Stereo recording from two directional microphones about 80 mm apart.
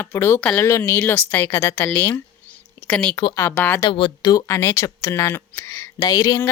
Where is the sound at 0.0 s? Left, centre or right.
Left.